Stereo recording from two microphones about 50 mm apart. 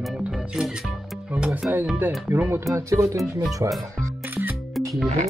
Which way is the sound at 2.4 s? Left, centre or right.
Right.